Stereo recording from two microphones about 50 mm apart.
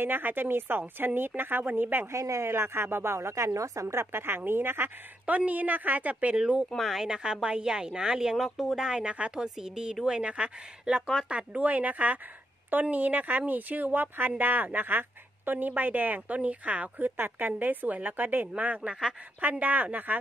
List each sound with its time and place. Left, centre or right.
0.0 s a woman's voice: right
2.1 s speech: right
2.5 s a woman's voice: right
5.2 s speech: right
6.3 s speech: right
6.8 s speech: centre; by 18.5 s right
18.8 s speech: centre
19.6 s speech: right